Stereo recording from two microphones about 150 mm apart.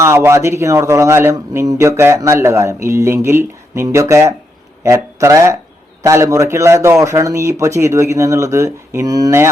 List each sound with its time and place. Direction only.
0.0 s speech: 20° right (ahead or behind)